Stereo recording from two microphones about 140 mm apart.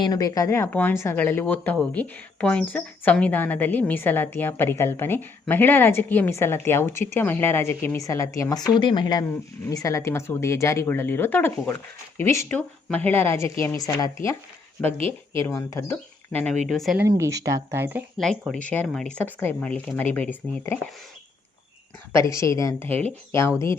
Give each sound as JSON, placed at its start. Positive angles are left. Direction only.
{"t": 0.0, "sound": "a woman's voice", "side_deg": 25}
{"t": 14.9, "sound": "speech", "side_deg": -40}
{"t": 15.7, "sound": "speech", "side_deg": 10}
{"t": 17.0, "sound": "speech", "side_deg": -20}
{"t": 18.2, "sound": "speech", "side_deg": 5}
{"t": 22.1, "sound": "a woman's voice", "side_deg": 20}